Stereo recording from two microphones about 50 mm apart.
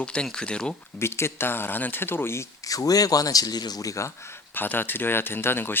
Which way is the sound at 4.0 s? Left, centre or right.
Left.